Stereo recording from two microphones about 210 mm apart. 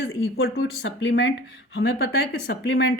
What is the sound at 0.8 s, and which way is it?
Speech, 60° left (ahead or behind).